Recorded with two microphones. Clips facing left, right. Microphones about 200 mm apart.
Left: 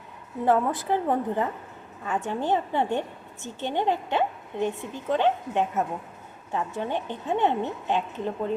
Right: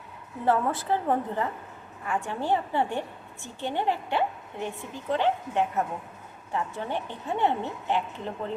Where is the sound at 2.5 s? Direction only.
20° left (ahead or behind).